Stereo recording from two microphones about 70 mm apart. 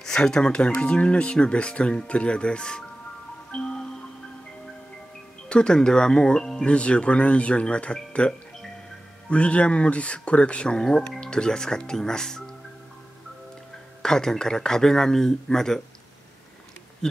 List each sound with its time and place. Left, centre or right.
0.0 s speech: centre
3.5 s music: centre
5.5 s speech: centre
14.0 s speech: centre
17.0 s speech: centre